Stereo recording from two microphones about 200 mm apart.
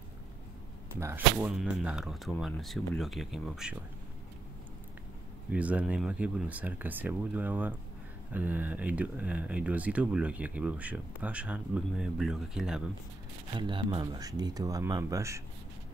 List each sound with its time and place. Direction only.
0.9 s speech: 10° right (ahead or behind)
5.5 s speech: 5° right (ahead or behind)
13.6 s speech: 25° right (ahead or behind)